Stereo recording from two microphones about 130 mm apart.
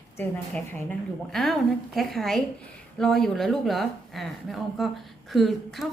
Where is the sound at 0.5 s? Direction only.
15° left (ahead or behind).